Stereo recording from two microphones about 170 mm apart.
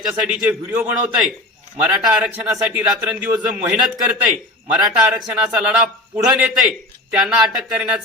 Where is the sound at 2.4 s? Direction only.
10° right (ahead or behind).